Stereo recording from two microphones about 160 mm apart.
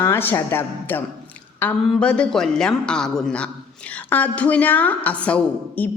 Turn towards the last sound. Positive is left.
turn(degrees=10)  # may be behind; listen again after turning